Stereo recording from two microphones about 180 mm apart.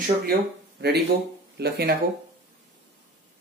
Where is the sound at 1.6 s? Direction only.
60° right (ahead or behind).